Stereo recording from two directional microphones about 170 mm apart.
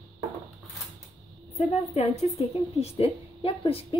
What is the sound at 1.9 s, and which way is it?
A woman's voice, 40° left (ahead or behind).